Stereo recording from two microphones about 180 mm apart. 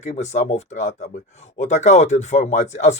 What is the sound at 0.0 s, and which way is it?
Speech, 40° left (ahead or behind).